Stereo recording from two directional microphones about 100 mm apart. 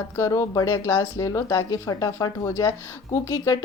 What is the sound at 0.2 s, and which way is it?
A woman's voice, 35° left (ahead or behind).